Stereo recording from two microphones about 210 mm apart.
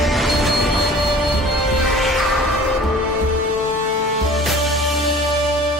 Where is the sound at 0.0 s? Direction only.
Centre (ahead or behind).